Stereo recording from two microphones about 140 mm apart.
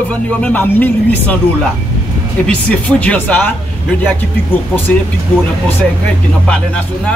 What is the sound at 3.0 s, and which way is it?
Speech, 10° left (ahead or behind).